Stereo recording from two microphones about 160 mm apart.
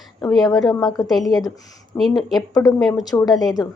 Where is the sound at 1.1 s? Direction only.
Centre (ahead or behind).